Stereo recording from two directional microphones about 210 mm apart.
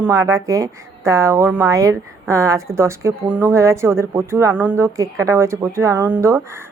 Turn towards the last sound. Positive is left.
turn(degrees=-15)  # may be behind; listen again after turning